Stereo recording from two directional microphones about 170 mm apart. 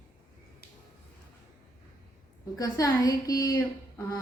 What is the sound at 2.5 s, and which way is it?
A man's voice, 20° left (ahead or behind).